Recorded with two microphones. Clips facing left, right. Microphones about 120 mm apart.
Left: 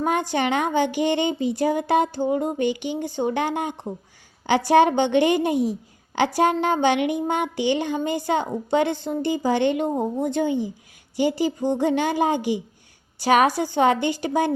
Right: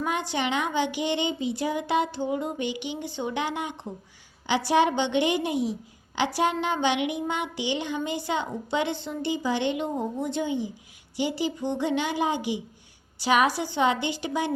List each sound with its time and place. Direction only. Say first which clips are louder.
0.0 s a woman's voice: left 5 dB; 45° left (ahead or behind)